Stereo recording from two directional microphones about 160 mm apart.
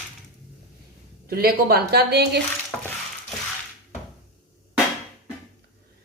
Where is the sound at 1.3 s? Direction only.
75° right (ahead or behind); by 2.4 s 90° right.